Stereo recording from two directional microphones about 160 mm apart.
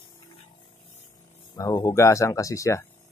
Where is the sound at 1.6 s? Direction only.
25° left (ahead or behind).